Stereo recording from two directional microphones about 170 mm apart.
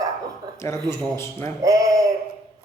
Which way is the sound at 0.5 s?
15° left (ahead or behind).